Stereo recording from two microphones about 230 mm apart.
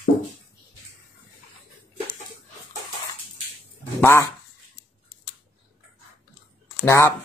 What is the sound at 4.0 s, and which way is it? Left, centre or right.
Speech, centre.